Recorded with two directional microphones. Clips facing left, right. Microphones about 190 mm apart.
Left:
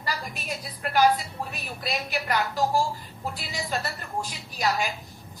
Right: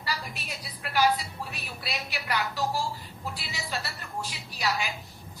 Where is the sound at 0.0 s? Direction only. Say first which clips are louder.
Left 2 dB; 50° left (ahead or behind).